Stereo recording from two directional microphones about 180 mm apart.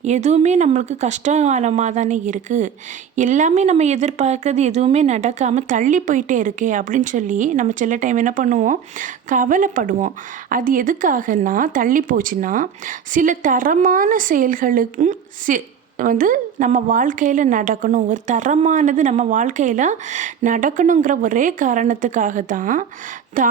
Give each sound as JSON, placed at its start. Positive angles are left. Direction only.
{"t": 0.0, "sound": "speech", "side_deg": -40}